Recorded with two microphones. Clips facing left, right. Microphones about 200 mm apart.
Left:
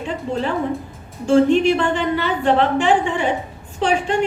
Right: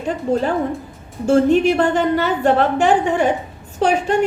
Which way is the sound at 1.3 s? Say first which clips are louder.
Even; 45° right (ahead or behind).